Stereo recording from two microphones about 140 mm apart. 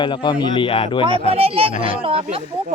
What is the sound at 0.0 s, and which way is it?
Speech, 35° left (ahead or behind).